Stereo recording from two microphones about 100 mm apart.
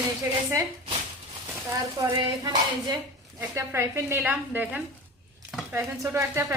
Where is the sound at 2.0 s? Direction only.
40° right (ahead or behind).